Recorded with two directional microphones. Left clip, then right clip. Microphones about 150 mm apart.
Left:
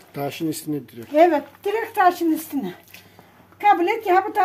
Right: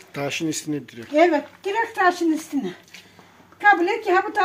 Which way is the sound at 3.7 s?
5° right (ahead or behind).